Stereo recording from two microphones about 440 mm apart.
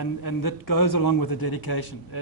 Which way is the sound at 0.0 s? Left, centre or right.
Left.